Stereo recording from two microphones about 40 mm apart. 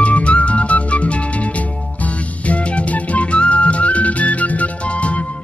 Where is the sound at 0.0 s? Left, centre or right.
Left.